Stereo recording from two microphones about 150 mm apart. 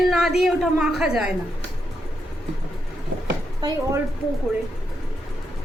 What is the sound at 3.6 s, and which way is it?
Speech, 25° right (ahead or behind).